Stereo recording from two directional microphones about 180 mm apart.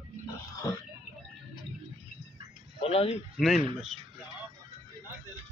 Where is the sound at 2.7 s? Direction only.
35° left (ahead or behind).